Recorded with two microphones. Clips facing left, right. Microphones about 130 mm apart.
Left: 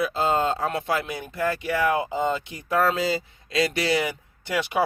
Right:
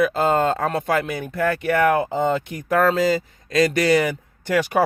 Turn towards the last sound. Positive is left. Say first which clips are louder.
# right 6 dB
turn(degrees=-50)  # may be behind; listen again after turning